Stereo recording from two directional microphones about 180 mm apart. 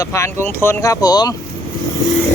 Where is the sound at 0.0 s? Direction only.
15° left (ahead or behind).